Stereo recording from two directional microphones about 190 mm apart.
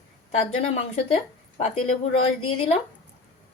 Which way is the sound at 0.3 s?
30° left (ahead or behind).